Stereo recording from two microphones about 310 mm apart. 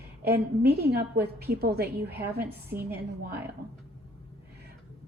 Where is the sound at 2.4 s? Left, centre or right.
Centre.